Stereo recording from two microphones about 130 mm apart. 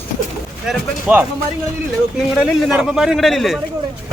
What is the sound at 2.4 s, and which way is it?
Speech, 5° right (ahead or behind).